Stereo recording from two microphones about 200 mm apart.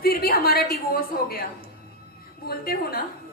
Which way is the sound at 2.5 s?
50° left (ahead or behind).